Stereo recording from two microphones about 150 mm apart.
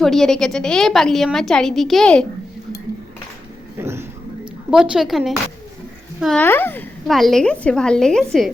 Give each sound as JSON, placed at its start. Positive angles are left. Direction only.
{"t": 0.0, "sound": "a woman's voice", "side_deg": 0}
{"t": 3.8, "sound": "a sound", "side_deg": -15}
{"t": 4.7, "sound": "a woman's voice", "side_deg": -5}
{"t": 6.3, "sound": "speech", "side_deg": 15}
{"t": 7.1, "sound": "a woman's voice", "side_deg": 0}